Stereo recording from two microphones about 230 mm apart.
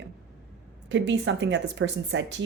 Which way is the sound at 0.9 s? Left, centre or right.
Right.